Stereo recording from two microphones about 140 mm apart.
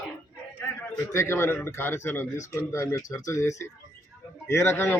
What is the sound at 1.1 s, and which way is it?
A man's voice, 20° left (ahead or behind).